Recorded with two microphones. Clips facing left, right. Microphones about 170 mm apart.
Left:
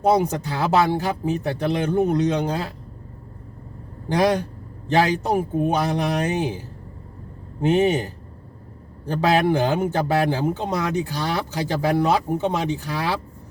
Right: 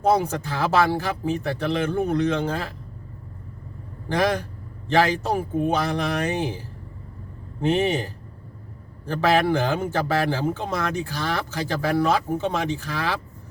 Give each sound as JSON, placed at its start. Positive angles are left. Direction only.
{"t": 0.0, "sound": "a man's voice", "side_deg": 15}
{"t": 4.1, "sound": "a man's voice", "side_deg": 15}